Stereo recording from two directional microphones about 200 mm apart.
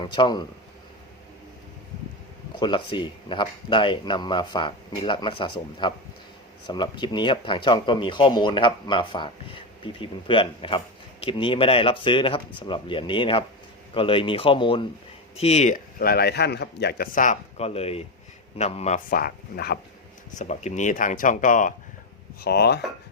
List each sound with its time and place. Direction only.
0.1 s speech: 20° left (ahead or behind)
2.6 s speech: 25° left (ahead or behind); by 19.8 s 50° left (ahead or behind)
20.3 s speech: 35° left (ahead or behind)
22.4 s speech: 55° left (ahead or behind)